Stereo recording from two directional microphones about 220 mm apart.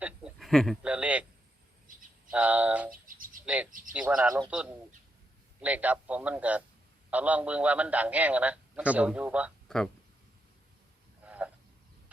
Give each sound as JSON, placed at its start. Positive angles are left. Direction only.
{"t": 0.0, "sound": "a sound", "side_deg": -5}
{"t": 2.3, "sound": "a man's voice", "side_deg": -5}
{"t": 2.9, "sound": "bird", "side_deg": -40}
{"t": 3.4, "sound": "bird", "side_deg": -5}
{"t": 3.7, "sound": "bird", "side_deg": -40}
{"t": 3.9, "sound": "a man's voice", "side_deg": -5}
{"t": 11.3, "sound": "a sound", "side_deg": -5}